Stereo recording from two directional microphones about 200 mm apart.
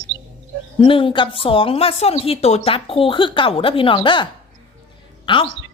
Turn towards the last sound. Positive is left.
turn(degrees=25)  # may be behind; listen again after turning